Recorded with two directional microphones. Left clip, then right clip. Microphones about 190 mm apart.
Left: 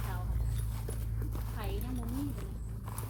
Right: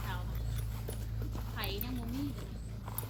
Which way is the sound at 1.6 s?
10° right (ahead or behind).